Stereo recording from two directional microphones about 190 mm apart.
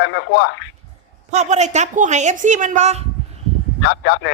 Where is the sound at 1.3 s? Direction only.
35° right (ahead or behind).